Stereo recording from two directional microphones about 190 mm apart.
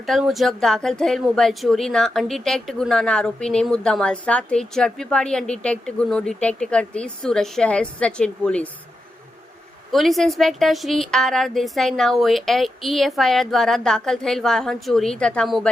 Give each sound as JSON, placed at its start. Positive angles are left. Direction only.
{"t": 0.0, "sound": "speech", "side_deg": 0}
{"t": 9.9, "sound": "speech", "side_deg": 0}